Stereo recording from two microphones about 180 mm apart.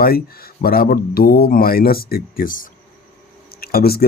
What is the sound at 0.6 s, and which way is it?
Speech, 55° left (ahead or behind).